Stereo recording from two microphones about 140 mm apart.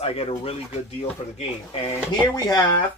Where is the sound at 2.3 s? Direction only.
25° left (ahead or behind).